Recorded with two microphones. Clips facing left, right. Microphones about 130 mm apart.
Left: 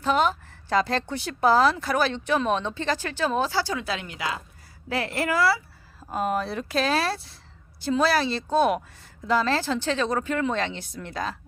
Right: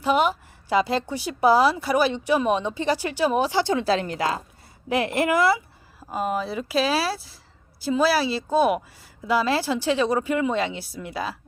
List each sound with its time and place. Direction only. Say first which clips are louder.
0.0 s speech: right 2 dB; 10° right (ahead or behind); by 4.4 s 40° right (ahead or behind)
4.9 s a woman's voice: right 5 dB; 20° right (ahead or behind)
6.1 s speech: even; centre (ahead or behind)